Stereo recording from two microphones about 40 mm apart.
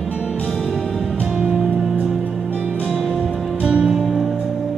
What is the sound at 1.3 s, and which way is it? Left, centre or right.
Music, centre.